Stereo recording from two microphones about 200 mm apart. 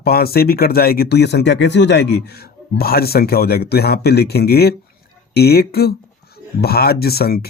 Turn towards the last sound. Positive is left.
turn(degrees=50)  # may be behind; listen again after turning